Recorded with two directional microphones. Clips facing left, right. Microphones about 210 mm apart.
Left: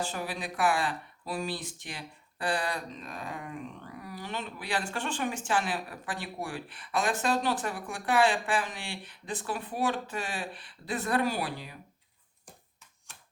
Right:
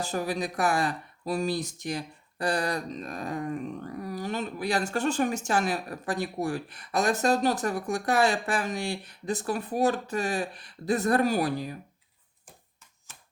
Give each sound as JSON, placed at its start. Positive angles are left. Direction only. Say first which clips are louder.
{"t": 0.0, "sound": "speech", "louder": "right 5 dB", "side_deg": -40}